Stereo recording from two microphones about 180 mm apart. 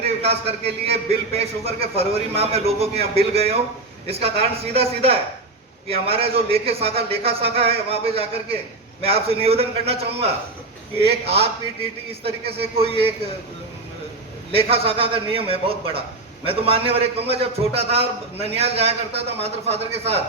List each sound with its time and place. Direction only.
0.0 s a man's voice: 35° right (ahead or behind)
11.3 s a man's voice: 35° right (ahead or behind)
12.5 s a man's voice: 30° right (ahead or behind)
14.5 s a man's voice: 30° right (ahead or behind)